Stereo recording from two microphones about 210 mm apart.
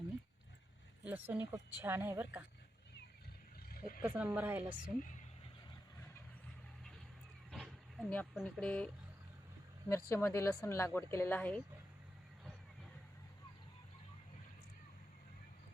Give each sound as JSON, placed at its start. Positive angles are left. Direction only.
{"t": 1.0, "sound": "a woman's voice", "side_deg": -10}
{"t": 3.7, "sound": "vehicle", "side_deg": 45}
{"t": 4.0, "sound": "a woman's voice", "side_deg": -10}
{"t": 7.5, "sound": "vehicle", "side_deg": 0}
{"t": 9.9, "sound": "speech", "side_deg": 10}